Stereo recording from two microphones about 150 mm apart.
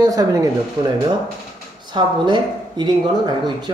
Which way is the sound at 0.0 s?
25° right (ahead or behind).